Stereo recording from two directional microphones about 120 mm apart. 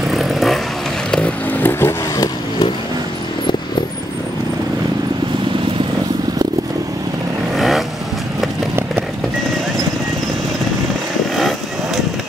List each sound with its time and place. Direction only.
0.1 s vehicle: centre (ahead or behind)
1.1 s vehicle: 10° left (ahead or behind)
7.5 s vehicle: centre (ahead or behind)
11.3 s vehicle: centre (ahead or behind)